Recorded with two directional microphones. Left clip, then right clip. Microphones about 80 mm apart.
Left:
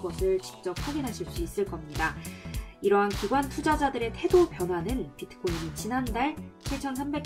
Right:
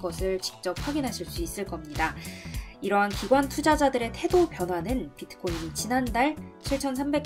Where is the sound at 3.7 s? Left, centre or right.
Centre.